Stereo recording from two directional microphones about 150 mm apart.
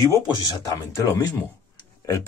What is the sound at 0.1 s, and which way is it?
Speech, 20° left (ahead or behind).